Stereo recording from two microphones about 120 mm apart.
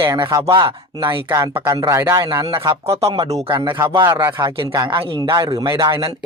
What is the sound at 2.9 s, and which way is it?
Speech, 55° right (ahead or behind).